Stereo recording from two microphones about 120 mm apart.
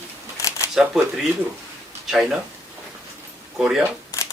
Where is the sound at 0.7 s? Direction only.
5° right (ahead or behind).